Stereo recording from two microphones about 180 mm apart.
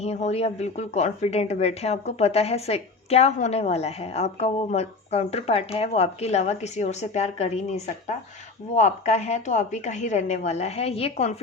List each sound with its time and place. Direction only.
0.0 s speech: 35° left (ahead or behind)
8.7 s speech: 40° left (ahead or behind)